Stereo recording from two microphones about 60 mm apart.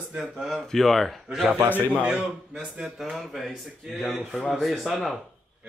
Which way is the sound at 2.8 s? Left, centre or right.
Centre.